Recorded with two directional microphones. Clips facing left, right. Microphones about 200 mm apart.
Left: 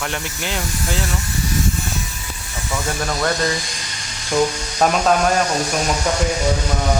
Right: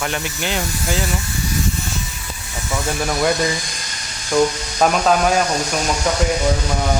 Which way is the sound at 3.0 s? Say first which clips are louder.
Right 3 dB; 10° right (ahead or behind).